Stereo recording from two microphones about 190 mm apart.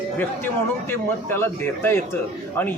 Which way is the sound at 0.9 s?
10° left (ahead or behind).